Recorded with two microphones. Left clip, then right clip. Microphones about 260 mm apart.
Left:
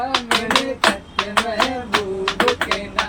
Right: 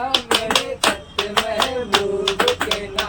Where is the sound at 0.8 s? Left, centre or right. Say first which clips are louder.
Left 2 dB; right.